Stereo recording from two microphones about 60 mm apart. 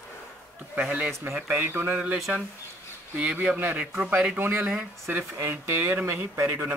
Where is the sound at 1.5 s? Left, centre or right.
Right.